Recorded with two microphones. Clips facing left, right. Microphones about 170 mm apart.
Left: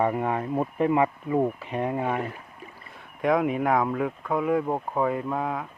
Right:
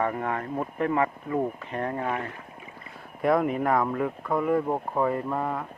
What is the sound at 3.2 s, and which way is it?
Speech, centre (ahead or behind).